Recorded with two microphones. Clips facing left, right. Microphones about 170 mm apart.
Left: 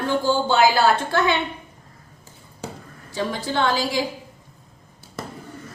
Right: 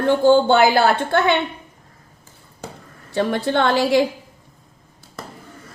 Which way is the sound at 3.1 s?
60° right (ahead or behind).